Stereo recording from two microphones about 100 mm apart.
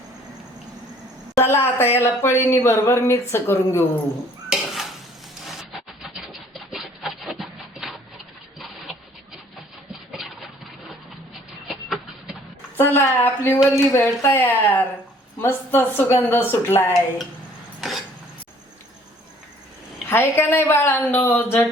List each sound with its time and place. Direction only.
1.4 s speech: 25° left (ahead or behind)
4.4 s dishes: 5° right (ahead or behind)
6.0 s rub: 5° right (ahead or behind)
10.1 s a sound: centre (ahead or behind)
11.7 s a sound: 5° right (ahead or behind)
12.7 s speech: 20° left (ahead or behind)
17.7 s cough: centre (ahead or behind)
20.1 s speech: 25° left (ahead or behind)